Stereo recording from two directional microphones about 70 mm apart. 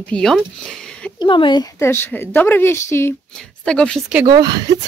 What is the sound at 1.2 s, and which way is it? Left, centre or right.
Speech, left.